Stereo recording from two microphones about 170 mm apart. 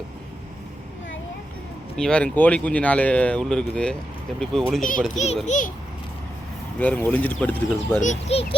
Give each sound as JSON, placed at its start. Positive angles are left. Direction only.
{"t": 2.0, "sound": "speech", "side_deg": 5}
{"t": 4.8, "sound": "a child's voice", "side_deg": 50}
{"t": 5.1, "sound": "a child's voice", "side_deg": 40}
{"t": 6.7, "sound": "speech", "side_deg": 10}
{"t": 8.0, "sound": "a child's voice", "side_deg": 40}